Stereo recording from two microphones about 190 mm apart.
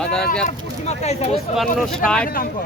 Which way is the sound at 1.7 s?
5° left (ahead or behind).